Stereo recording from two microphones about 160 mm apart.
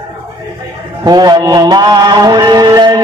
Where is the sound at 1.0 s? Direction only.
25° right (ahead or behind).